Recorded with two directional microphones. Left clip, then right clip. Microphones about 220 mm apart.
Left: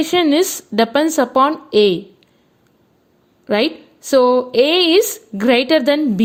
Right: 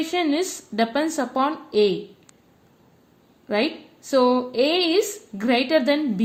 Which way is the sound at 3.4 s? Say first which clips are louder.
Left 6 dB; 40° left (ahead or behind).